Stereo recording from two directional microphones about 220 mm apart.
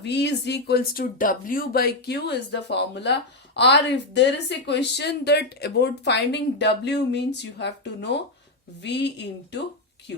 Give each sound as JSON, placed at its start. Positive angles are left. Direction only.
{"t": 0.0, "sound": "speech", "side_deg": 50}